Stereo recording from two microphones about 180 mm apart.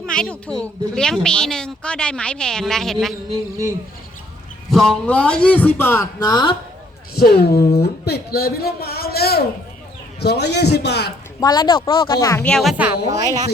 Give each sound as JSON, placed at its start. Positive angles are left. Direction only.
{"t": 0.0, "sound": "a woman's voice", "side_deg": 5}
{"t": 4.7, "sound": "a man's voice", "side_deg": 0}
{"t": 7.2, "sound": "a man's voice", "side_deg": 60}
{"t": 11.3, "sound": "speech", "side_deg": 20}
{"t": 12.5, "sound": "a woman's voice", "side_deg": 0}
{"t": 13.1, "sound": "speech", "side_deg": -20}